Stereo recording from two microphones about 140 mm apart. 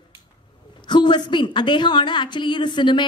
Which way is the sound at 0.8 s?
30° left (ahead or behind).